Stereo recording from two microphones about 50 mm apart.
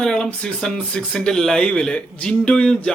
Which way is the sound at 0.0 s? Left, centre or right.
Centre.